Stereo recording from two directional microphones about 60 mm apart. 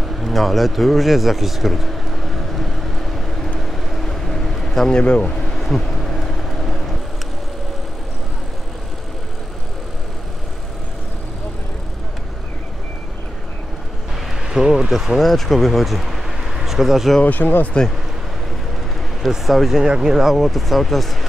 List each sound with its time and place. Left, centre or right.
0.2 s vehicle: centre
4.9 s a man's voice: centre
5.5 s a sound: centre
14.4 s a sound: centre
15.1 s speech: centre
17.2 s speech: left
19.2 s speech: centre
19.8 s speech: centre